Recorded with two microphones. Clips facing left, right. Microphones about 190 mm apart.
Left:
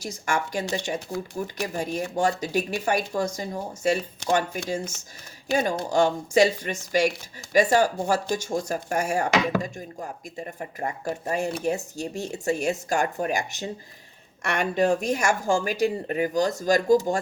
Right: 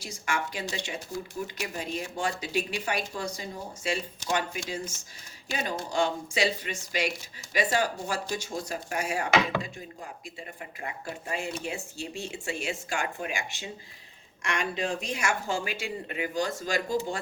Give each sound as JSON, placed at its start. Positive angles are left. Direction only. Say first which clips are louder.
{"t": 0.0, "sound": "speech", "louder": "left 5 dB", "side_deg": 45}